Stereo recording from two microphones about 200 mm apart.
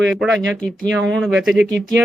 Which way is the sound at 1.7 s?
65° right (ahead or behind).